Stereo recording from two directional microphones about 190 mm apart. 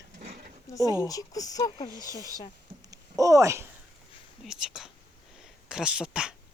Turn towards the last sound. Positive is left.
turn(degrees=-5)  # may be behind; listen again after turning